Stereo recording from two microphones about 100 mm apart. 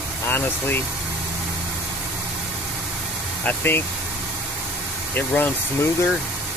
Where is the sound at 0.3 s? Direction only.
20° left (ahead or behind).